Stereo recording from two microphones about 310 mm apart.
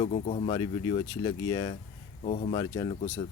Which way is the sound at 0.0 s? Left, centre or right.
Centre.